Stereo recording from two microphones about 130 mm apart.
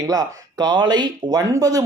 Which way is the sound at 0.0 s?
30° right (ahead or behind).